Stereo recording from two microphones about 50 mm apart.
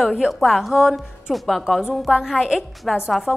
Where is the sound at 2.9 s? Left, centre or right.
Centre.